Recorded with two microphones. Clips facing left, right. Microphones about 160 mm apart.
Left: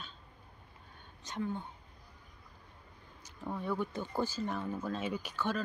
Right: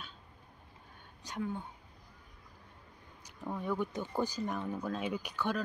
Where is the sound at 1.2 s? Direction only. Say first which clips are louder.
Left 1 dB; 10° right (ahead or behind).